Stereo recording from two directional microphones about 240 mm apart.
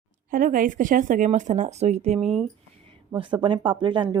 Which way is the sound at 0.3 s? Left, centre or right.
Right.